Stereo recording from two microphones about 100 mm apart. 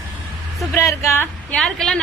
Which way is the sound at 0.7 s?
30° left (ahead or behind).